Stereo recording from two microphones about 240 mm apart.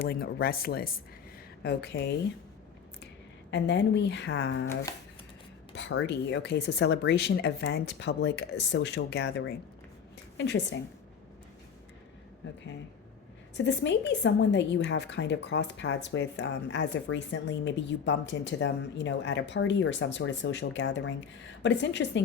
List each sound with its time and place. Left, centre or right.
0.0 s a woman's voice: left
3.5 s a woman's voice: left
5.7 s a woman's voice: left
10.3 s speech: left
13.7 s a woman's voice: left